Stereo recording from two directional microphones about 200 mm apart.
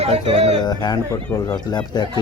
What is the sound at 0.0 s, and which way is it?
Speech, 30° right (ahead or behind).